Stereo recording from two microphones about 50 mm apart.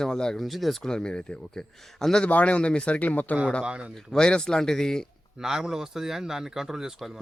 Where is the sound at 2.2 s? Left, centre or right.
Left.